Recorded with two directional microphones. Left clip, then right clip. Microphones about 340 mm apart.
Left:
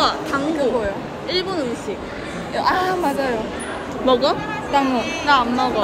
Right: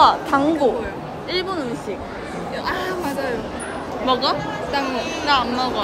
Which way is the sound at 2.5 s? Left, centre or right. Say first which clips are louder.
Left 7 dB; centre.